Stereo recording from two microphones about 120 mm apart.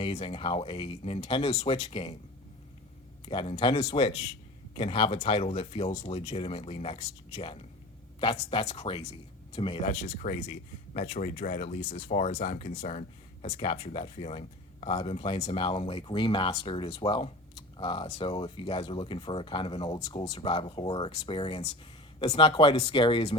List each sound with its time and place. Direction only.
0.1 s speech: 50° left (ahead or behind)
3.2 s speech: 45° left (ahead or behind)
9.8 s speech: 90° left; by 23.3 s 45° left (ahead or behind)